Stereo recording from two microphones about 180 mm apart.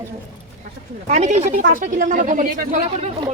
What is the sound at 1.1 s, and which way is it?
Speech, 40° right (ahead or behind).